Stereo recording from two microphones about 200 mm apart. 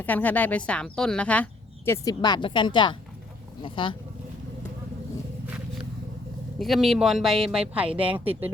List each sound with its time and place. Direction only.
0.0 s a woman's voice: 10° left (ahead or behind); by 3.9 s 25° left (ahead or behind)
6.6 s speech: centre (ahead or behind)